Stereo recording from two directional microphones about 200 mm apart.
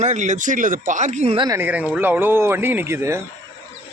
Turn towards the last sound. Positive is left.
turn(degrees=-15)  # may be behind; listen again after turning